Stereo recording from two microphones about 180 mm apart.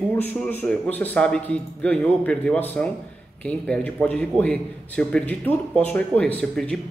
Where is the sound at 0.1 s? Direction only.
10° left (ahead or behind).